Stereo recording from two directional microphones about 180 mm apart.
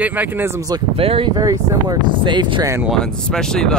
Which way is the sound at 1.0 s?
30° right (ahead or behind).